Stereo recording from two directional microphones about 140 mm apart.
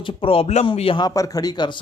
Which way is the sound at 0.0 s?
40° left (ahead or behind).